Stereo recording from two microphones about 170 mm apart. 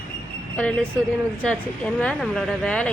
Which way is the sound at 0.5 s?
5° left (ahead or behind).